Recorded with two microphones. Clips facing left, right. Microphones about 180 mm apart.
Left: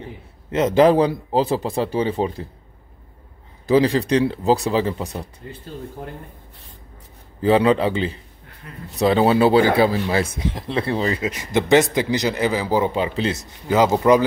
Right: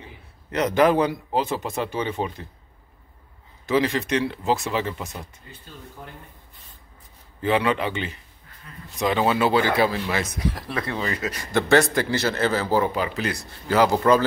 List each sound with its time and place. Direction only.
0.5 s a man's voice: 25° left (ahead or behind)
3.6 s a man's voice: 35° left (ahead or behind)
7.4 s a man's voice: 35° left (ahead or behind)
11.2 s a man's voice: 15° left (ahead or behind)